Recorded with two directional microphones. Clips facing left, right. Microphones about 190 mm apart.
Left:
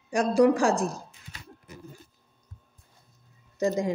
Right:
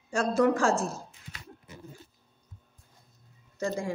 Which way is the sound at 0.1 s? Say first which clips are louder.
Left 4 dB; 15° left (ahead or behind).